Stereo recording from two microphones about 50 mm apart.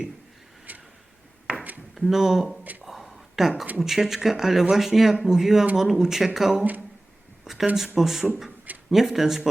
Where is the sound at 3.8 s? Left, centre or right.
Centre.